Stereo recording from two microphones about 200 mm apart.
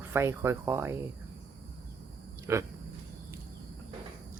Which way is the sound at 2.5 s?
15° right (ahead or behind).